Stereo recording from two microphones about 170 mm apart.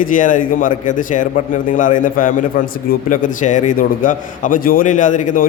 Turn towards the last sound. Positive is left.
turn(degrees=50)  # may be behind; listen again after turning